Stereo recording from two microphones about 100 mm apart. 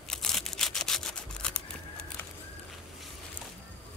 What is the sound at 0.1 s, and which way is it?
Camera, 5° left (ahead or behind).